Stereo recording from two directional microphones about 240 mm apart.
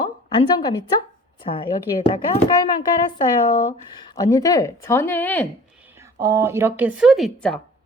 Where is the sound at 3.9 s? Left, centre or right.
Centre.